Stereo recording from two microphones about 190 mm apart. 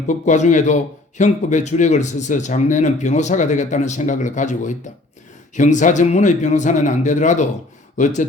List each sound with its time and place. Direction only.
0.1 s a man's voice: 40° left (ahead or behind)